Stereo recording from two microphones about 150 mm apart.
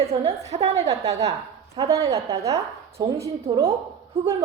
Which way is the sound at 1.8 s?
20° right (ahead or behind).